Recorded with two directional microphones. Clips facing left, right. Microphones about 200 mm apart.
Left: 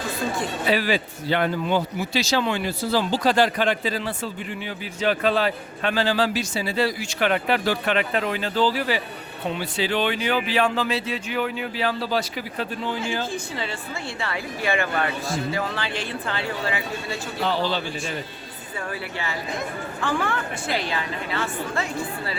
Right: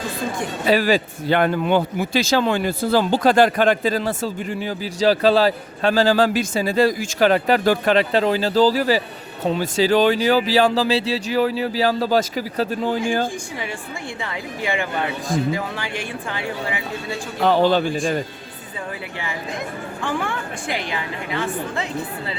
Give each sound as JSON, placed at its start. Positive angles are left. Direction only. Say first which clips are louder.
{"t": 0.7, "sound": "a man's voice", "louder": "right 6 dB", "side_deg": -40}
{"t": 14.2, "sound": "speech", "louder": "even", "side_deg": -15}
{"t": 17.4, "sound": "speech", "louder": "right 9 dB", "side_deg": -50}
{"t": 20.0, "sound": "speech", "louder": "even", "side_deg": -15}